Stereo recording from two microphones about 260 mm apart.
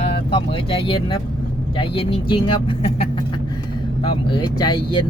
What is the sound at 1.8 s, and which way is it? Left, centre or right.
Speech, left.